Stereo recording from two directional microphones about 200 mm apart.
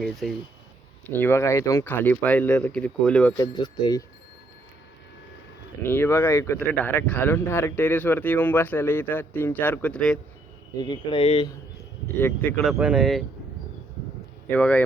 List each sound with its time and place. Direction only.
0.0 s speech: centre (ahead or behind)
3.3 s speech: 20° left (ahead or behind)
5.8 s speech: 10° left (ahead or behind)
10.8 s speech: 20° left (ahead or behind)
12.0 s speech: 10° left (ahead or behind)
14.5 s speech: 5° left (ahead or behind)